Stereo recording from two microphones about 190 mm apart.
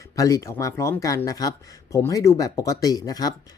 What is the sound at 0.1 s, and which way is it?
Speech, 20° left (ahead or behind).